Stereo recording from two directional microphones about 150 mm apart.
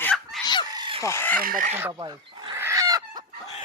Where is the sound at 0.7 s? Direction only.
30° right (ahead or behind).